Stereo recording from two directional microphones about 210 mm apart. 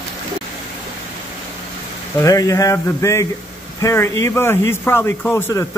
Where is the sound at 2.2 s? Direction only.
15° left (ahead or behind).